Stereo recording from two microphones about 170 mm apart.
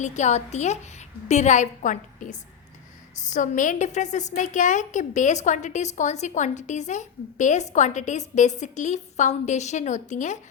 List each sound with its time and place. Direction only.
0.0 s a woman's voice: 45° left (ahead or behind)